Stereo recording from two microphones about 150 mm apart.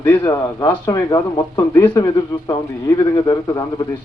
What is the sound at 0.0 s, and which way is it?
A man's voice, 15° left (ahead or behind).